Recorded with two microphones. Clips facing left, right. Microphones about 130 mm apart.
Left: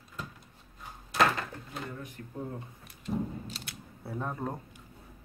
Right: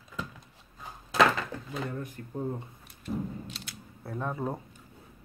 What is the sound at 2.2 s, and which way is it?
Speech, 35° right (ahead or behind).